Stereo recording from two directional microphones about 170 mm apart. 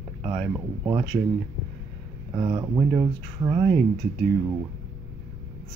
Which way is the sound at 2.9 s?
5° right (ahead or behind).